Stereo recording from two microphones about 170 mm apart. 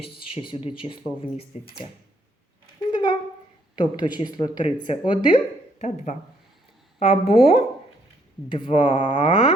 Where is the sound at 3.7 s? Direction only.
25° left (ahead or behind).